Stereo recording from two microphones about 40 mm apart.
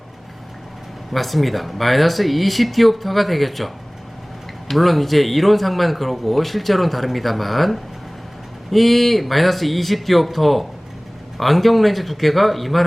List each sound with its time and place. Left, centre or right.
1.1 s speech: centre
4.7 s speech: centre